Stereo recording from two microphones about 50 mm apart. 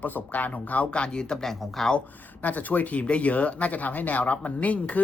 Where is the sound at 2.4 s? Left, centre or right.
Left.